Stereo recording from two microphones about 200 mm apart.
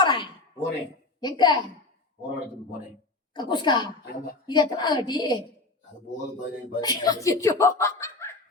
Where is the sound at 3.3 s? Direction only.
25° left (ahead or behind).